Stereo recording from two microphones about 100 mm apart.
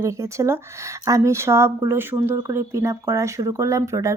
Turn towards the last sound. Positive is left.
turn(degrees=-30)  # may be behind; listen again after turning